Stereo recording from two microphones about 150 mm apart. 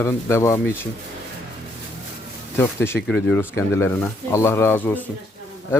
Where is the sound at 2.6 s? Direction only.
15° left (ahead or behind).